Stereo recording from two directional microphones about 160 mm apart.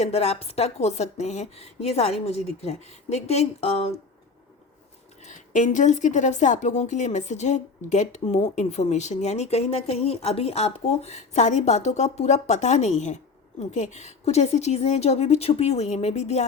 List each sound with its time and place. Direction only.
0.0 s a woman's voice: 40° left (ahead or behind)
5.2 s a woman's voice: 50° left (ahead or behind)